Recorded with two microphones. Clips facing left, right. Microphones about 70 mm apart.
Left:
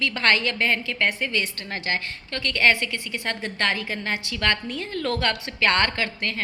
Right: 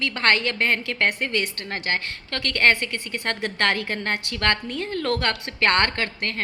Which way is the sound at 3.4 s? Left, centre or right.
Right.